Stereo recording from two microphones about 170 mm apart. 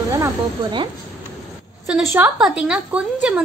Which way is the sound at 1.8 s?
5° right (ahead or behind).